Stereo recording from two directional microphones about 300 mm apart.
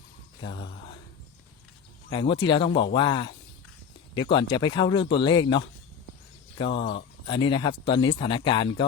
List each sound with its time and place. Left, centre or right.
0.4 s speech: centre
2.0 s speech: centre